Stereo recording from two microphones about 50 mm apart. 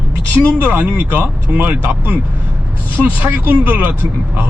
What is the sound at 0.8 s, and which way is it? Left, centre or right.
Speech, right.